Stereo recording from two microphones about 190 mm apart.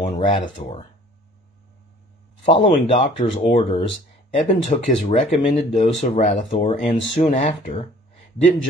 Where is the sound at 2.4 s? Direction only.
40° left (ahead or behind).